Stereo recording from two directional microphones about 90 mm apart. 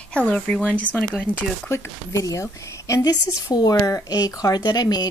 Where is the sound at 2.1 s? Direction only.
35° left (ahead or behind).